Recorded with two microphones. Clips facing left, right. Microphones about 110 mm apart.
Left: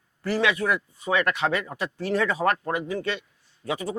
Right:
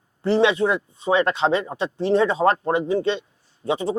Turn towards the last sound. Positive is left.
turn(degrees=-25)  # may be behind; listen again after turning